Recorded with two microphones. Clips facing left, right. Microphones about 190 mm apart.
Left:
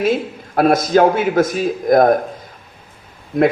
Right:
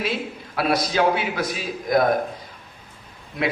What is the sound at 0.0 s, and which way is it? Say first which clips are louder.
A man's voice: left 9 dB; 50° left (ahead or behind).